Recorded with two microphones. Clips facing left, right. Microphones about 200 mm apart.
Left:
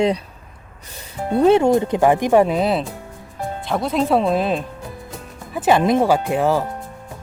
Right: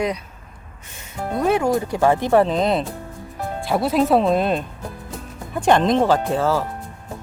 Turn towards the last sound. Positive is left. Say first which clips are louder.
# left 2 dB
turn(degrees=15)  # may be behind; listen again after turning